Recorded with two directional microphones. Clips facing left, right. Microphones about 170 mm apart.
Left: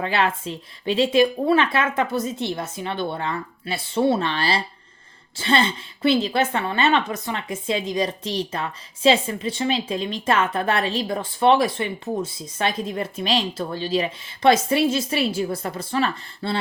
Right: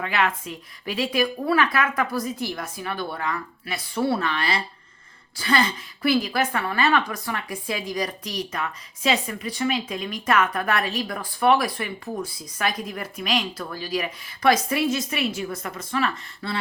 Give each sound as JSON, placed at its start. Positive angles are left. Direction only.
{"t": 0.0, "sound": "a woman's voice", "side_deg": 30}